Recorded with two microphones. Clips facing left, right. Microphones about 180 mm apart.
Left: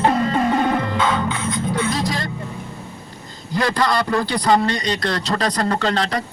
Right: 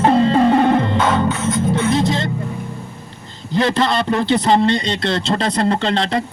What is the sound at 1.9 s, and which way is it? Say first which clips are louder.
Speech: right 6 dB; 25° right (ahead or behind).